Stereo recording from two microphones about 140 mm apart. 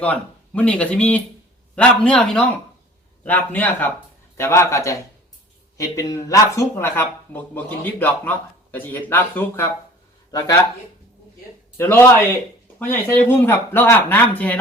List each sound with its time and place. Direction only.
0.0 s a man's voice: 10° left (ahead or behind); by 10.7 s 25° left (ahead or behind)
11.8 s a man's voice: 15° left (ahead or behind)